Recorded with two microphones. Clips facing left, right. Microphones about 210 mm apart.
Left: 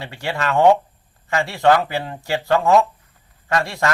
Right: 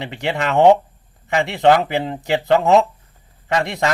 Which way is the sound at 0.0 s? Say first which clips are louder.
Right 3 dB; 20° right (ahead or behind).